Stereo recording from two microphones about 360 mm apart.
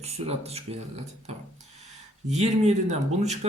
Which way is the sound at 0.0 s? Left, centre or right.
Centre.